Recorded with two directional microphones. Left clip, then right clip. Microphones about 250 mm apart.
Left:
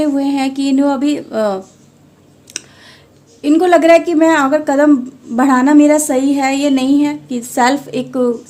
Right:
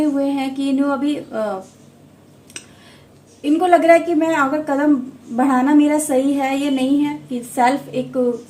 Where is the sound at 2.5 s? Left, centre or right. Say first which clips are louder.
Left 8 dB; left.